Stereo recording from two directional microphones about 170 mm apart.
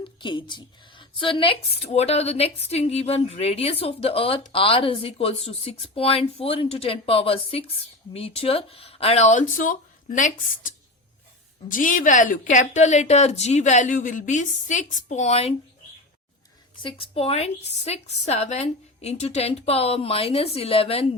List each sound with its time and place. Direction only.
0.0 s a woman's voice: 30° left (ahead or behind); by 10.7 s 50° left (ahead or behind)
11.7 s a woman's voice: 50° left (ahead or behind)
16.8 s a woman's voice: 35° left (ahead or behind)